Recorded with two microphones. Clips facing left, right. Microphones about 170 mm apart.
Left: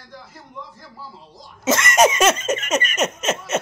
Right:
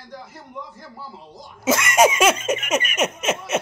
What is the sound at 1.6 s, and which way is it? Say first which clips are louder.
Laughter: even; 10° right (ahead or behind).